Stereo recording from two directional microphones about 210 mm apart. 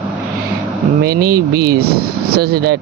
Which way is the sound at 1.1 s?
45° right (ahead or behind).